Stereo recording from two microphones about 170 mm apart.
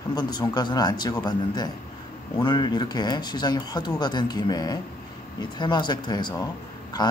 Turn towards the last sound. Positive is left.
turn(degrees=25)  # may be behind; listen again after turning